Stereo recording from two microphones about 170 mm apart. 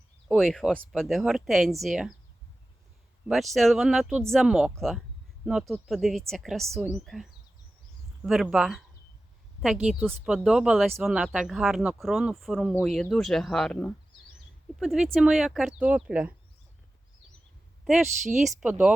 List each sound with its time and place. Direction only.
0.3 s speech: centre (ahead or behind)
3.2 s speech: centre (ahead or behind)
9.8 s speech: 5° right (ahead or behind)
17.8 s a woman's voice: 5° right (ahead or behind)